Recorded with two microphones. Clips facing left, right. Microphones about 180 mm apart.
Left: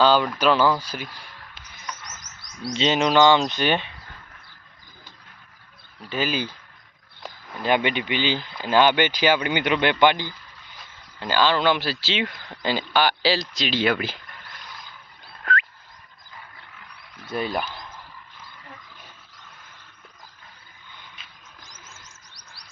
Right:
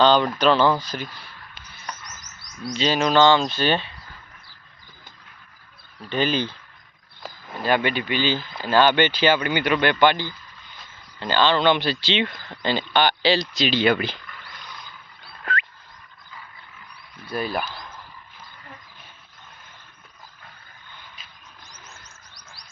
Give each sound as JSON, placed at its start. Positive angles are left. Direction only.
{"t": 0.0, "sound": "speech", "side_deg": 5}
{"t": 2.7, "sound": "speech", "side_deg": 25}
{"t": 6.0, "sound": "speech", "side_deg": 5}
{"t": 7.6, "sound": "speech", "side_deg": 15}
{"t": 17.3, "sound": "speech", "side_deg": 25}
{"t": 21.7, "sound": "chirp", "side_deg": 80}